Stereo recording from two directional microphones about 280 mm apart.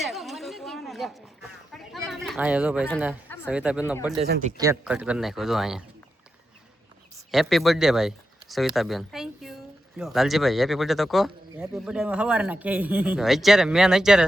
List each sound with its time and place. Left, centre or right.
0.0 s a sound: centre
2.0 s speech: centre
3.2 s a sound: centre
3.5 s speech: centre
4.3 s speech: right
4.5 s speech: centre
7.3 s speech: centre